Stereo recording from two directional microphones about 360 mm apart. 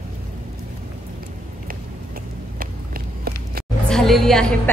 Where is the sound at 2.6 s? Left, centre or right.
Right.